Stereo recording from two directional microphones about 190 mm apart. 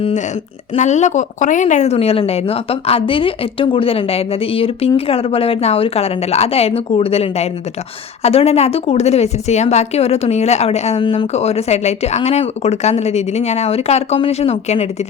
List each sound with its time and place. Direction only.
0.8 s a woman's voice: 40° left (ahead or behind)